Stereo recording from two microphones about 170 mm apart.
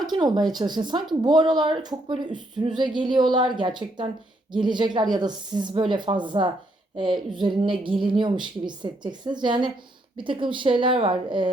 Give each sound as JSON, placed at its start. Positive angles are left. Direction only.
{"t": 0.0, "sound": "speech", "side_deg": -25}